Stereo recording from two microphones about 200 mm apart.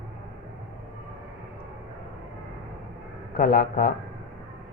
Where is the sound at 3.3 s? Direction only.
45° left (ahead or behind).